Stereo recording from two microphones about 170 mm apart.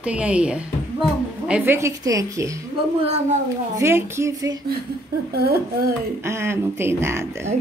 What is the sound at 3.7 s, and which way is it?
Speech, 15° right (ahead or behind).